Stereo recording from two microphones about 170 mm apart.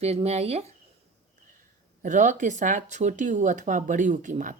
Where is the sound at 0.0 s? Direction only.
40° right (ahead or behind).